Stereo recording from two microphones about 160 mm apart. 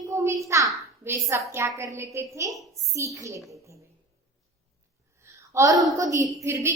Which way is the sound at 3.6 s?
20° right (ahead or behind).